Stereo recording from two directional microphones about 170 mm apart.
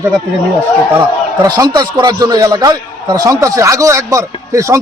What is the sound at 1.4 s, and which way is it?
A man's voice, 20° right (ahead or behind).